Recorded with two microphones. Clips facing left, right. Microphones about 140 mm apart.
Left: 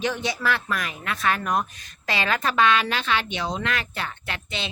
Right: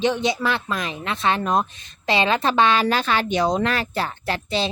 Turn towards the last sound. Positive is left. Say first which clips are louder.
# right 9 dB
turn(degrees=-35)  # may be behind; listen again after turning